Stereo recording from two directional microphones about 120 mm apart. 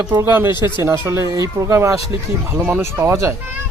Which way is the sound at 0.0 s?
25° right (ahead or behind).